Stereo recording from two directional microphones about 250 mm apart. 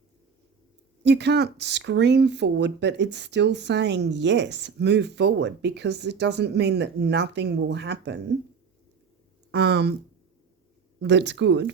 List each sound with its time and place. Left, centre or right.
1.0 s speech: right
9.5 s speech: right
11.0 s speech: right